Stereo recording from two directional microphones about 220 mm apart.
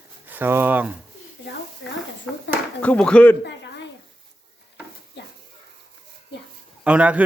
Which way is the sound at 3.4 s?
55° left (ahead or behind).